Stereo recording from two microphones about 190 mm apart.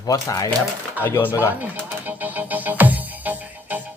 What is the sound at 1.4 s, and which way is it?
Music, 10° right (ahead or behind).